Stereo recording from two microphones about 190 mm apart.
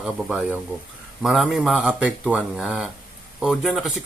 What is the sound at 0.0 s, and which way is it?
Speech, 5° right (ahead or behind).